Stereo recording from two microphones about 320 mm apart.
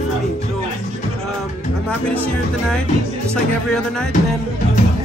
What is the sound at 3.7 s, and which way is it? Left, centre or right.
Speech, centre.